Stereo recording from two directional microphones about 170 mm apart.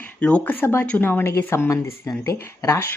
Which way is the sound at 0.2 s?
5° left (ahead or behind).